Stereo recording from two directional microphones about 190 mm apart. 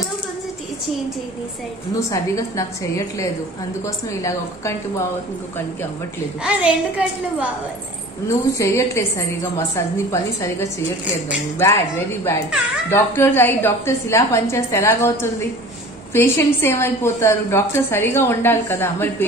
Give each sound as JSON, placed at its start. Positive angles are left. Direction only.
{"t": 2.0, "sound": "a woman's voice", "side_deg": 15}
{"t": 6.4, "sound": "a woman's voice", "side_deg": -5}
{"t": 8.5, "sound": "a woman's voice", "side_deg": 15}